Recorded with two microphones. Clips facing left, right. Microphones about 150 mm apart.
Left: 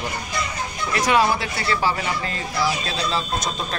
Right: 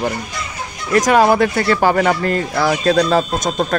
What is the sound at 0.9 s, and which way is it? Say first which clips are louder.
Speech: right 7 dB; 45° right (ahead or behind).